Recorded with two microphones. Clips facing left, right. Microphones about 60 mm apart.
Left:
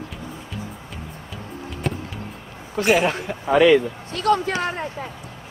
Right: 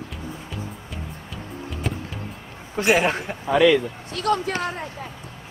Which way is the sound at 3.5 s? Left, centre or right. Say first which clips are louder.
Left 2 dB; left.